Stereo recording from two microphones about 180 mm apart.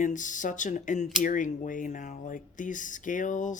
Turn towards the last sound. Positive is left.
turn(degrees=45)  # may be behind; listen again after turning